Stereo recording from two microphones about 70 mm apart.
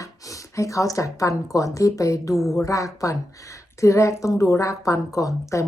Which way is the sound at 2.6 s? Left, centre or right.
Left.